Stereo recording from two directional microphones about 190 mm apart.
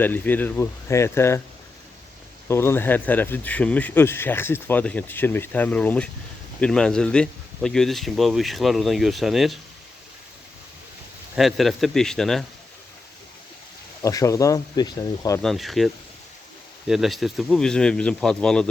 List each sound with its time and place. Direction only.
0.0 s speech: 10° left (ahead or behind)
2.5 s speech: 10° left (ahead or behind)
11.3 s speech: centre (ahead or behind)
14.0 s speech: 15° left (ahead or behind)
15.4 s speech: centre (ahead or behind)